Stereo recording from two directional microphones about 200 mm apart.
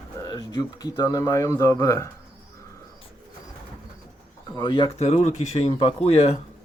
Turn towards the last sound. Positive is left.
turn(degrees=30)  # may be behind; listen again after turning